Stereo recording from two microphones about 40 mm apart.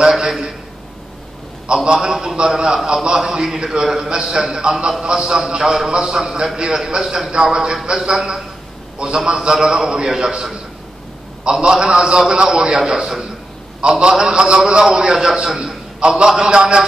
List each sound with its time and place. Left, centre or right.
0.0 s a sound: centre
1.9 s a man's voice: centre
11.6 s a man's voice: right